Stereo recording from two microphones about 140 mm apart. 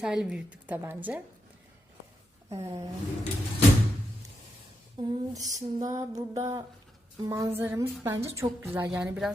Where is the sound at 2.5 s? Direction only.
45° right (ahead or behind).